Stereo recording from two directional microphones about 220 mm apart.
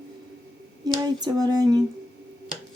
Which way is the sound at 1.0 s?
15° right (ahead or behind).